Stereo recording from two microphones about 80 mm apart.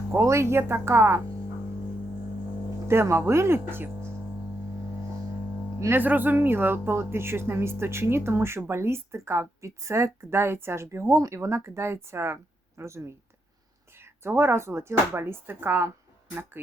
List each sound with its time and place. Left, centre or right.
0.1 s speech: right
2.8 s speech: right
5.9 s speech: right